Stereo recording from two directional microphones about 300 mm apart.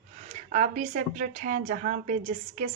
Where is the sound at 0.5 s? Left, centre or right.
Right.